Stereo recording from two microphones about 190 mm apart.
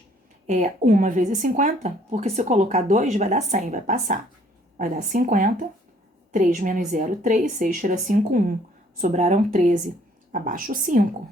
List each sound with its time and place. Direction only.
0.4 s a woman's voice: 40° right (ahead or behind)